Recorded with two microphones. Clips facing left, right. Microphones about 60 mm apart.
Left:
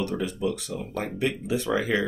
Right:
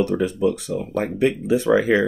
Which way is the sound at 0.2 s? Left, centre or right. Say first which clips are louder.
Right 7 dB; right.